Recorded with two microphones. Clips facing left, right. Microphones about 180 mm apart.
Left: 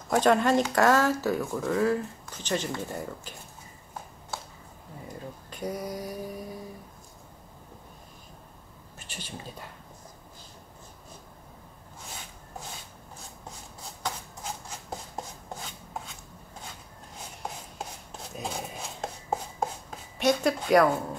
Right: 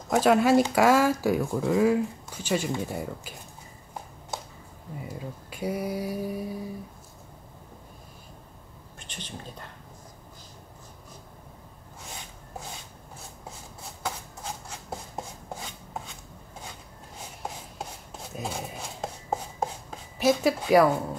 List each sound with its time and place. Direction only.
0.1 s speech: 5° right (ahead or behind)
4.3 s a sound: 20° right (ahead or behind)
5.0 s speech: 10° right (ahead or behind)
9.0 s speech: 5° left (ahead or behind)
18.3 s chopping: centre (ahead or behind)